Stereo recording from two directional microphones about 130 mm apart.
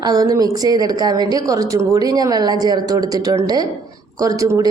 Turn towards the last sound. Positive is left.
turn(degrees=-25)  # may be behind; listen again after turning